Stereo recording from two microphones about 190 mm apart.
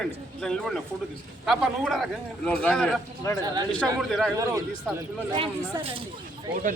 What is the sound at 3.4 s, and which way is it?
Speech, 20° right (ahead or behind).